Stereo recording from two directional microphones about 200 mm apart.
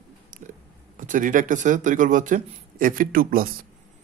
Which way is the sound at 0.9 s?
40° right (ahead or behind).